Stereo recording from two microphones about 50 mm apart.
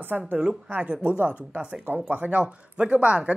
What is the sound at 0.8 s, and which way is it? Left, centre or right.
Speech, right.